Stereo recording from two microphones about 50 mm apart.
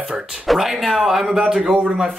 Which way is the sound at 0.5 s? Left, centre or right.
Centre.